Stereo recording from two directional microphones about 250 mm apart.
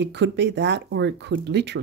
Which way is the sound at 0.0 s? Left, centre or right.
Right.